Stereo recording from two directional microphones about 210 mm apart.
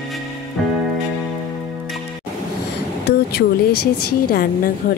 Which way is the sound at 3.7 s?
90° left.